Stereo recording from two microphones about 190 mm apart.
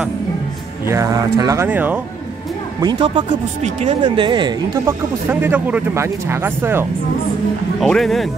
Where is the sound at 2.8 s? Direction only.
25° right (ahead or behind).